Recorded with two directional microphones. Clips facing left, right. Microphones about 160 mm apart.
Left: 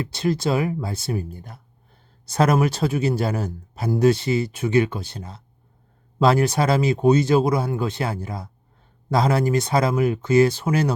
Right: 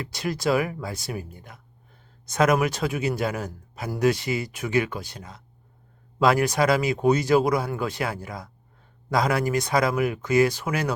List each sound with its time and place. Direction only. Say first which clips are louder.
0.0 s a man's voice: left 4 dB; 25° left (ahead or behind)